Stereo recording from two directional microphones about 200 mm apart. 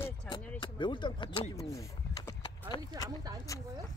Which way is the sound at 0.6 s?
25° left (ahead or behind).